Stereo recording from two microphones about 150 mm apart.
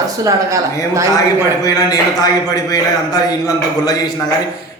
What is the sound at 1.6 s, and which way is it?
A man's voice, 25° left (ahead or behind).